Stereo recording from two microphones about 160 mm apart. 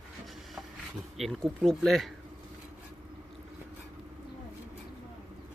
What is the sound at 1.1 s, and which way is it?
Speech, centre (ahead or behind).